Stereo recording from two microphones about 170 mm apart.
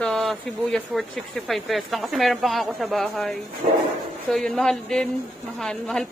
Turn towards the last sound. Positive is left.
turn(degrees=5)  # may be behind; listen again after turning